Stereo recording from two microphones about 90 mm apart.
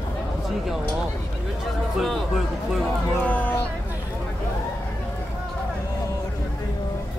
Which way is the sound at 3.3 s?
20° left (ahead or behind).